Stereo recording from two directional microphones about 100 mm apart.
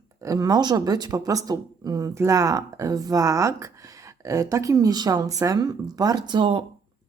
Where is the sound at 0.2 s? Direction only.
35° right (ahead or behind).